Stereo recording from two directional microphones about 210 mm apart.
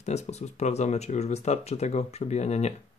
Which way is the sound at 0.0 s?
30° left (ahead or behind).